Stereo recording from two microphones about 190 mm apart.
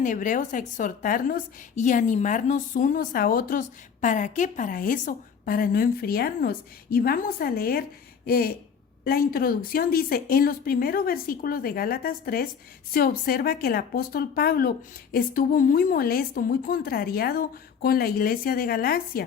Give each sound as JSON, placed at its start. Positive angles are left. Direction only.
{"t": 0.0, "sound": "a woman's voice", "side_deg": 40}